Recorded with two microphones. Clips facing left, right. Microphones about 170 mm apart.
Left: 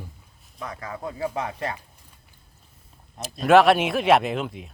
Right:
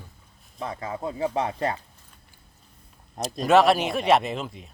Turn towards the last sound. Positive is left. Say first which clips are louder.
# left 3 dB
turn(degrees=0)  # may be behind; listen again after turning